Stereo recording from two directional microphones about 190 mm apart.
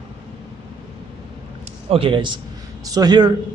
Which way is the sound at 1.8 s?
30° right (ahead or behind).